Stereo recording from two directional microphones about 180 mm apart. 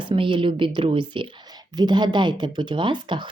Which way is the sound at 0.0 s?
25° right (ahead or behind).